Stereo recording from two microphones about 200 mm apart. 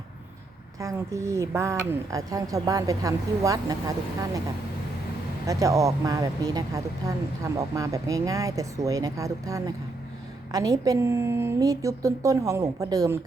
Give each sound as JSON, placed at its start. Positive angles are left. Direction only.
{"t": 0.8, "sound": "speech", "side_deg": -15}
{"t": 5.5, "sound": "speech", "side_deg": -15}